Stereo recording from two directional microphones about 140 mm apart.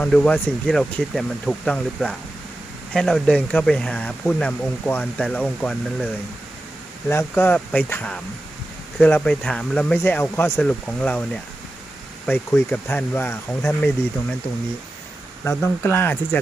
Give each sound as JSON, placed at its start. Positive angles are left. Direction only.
{"t": 0.0, "sound": "speech", "side_deg": 10}
{"t": 7.1, "sound": "speech", "side_deg": 15}
{"t": 15.4, "sound": "speech", "side_deg": 20}